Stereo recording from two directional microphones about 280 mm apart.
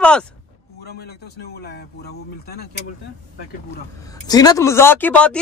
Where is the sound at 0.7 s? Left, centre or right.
Left.